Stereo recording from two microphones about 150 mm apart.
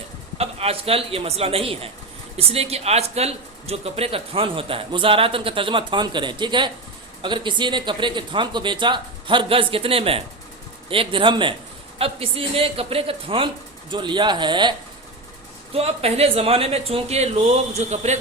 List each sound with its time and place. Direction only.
0.3 s speech: 40° right (ahead or behind)
15.7 s speech: 40° right (ahead or behind)